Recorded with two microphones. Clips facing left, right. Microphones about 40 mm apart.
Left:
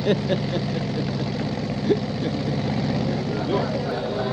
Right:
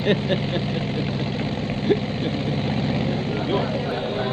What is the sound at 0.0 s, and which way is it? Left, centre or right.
Vehicle, right.